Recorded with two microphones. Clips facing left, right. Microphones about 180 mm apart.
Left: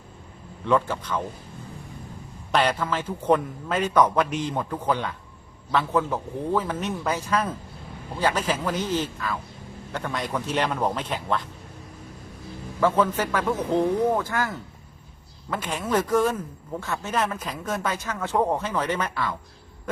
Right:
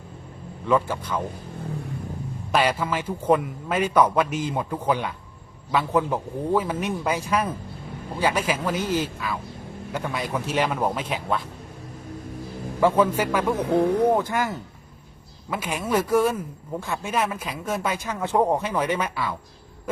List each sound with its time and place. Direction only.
0.6 s speech: 5° right (ahead or behind)
2.5 s speech: 10° right (ahead or behind)
12.8 s speech: 10° right (ahead or behind)
13.7 s speech: 65° right (ahead or behind)
14.1 s speech: 20° right (ahead or behind)